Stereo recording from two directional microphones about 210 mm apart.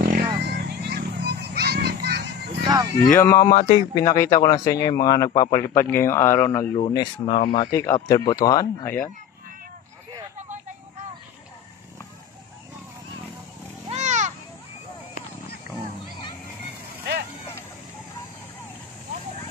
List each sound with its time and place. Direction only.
0.0 s children playing: 50° right (ahead or behind)
2.6 s a sound: 20° right (ahead or behind)
3.1 s speech: 10° left (ahead or behind)
6.8 s speech: 20° left (ahead or behind)
7.3 s speech: 35° left (ahead or behind)
7.7 s speech: 15° left (ahead or behind)
13.8 s a sound: 35° right (ahead or behind)